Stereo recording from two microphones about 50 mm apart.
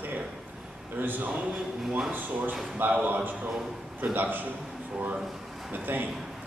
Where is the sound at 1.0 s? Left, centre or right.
Right.